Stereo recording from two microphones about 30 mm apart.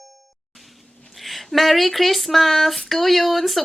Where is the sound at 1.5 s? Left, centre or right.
Centre.